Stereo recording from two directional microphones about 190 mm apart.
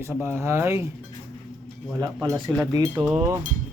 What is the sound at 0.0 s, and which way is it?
Speech, 15° right (ahead or behind).